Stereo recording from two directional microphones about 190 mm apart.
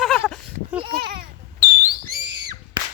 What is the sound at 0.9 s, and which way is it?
Speech, 55° right (ahead or behind).